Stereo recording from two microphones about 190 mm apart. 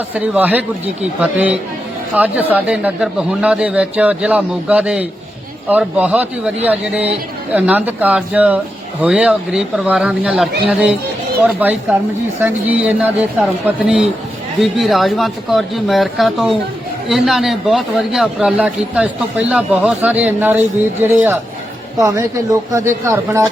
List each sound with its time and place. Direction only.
0.1 s a man's voice: 10° right (ahead or behind)